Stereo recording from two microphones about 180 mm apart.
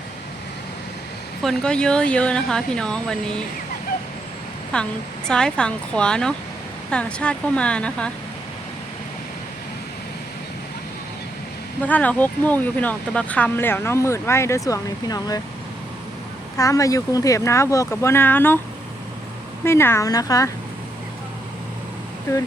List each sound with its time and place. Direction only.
1.5 s speech: 5° left (ahead or behind)
4.7 s speech: 5° left (ahead or behind)
11.8 s speech: 10° left (ahead or behind)
16.6 s speech: 20° left (ahead or behind)
19.6 s speech: 15° left (ahead or behind)